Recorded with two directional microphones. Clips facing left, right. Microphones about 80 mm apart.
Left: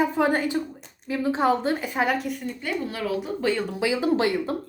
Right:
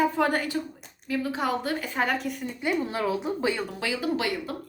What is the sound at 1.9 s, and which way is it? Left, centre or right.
Speech, centre.